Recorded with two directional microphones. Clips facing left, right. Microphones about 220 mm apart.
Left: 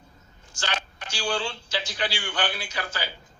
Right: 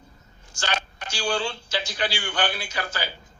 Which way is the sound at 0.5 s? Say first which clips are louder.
Right 2 dB; 45° right (ahead or behind).